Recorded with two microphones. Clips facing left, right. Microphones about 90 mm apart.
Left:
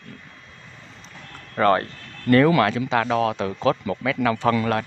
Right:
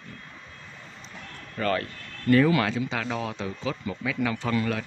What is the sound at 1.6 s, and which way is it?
Speech, 60° left (ahead or behind).